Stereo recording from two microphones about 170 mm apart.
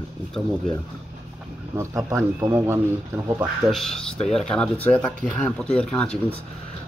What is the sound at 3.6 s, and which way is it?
Speech, centre (ahead or behind).